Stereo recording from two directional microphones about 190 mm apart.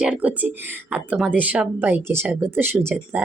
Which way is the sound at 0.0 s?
5° right (ahead or behind).